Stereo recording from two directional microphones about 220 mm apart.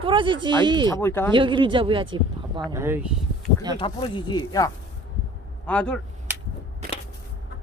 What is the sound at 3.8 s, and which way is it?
Speech, 20° left (ahead or behind).